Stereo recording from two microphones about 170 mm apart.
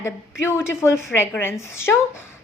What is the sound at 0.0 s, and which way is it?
A woman's voice, 15° left (ahead or behind).